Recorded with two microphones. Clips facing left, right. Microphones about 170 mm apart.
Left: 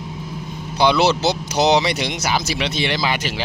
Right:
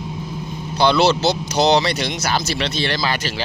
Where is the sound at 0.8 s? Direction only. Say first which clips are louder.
Right 1 dB; 15° left (ahead or behind).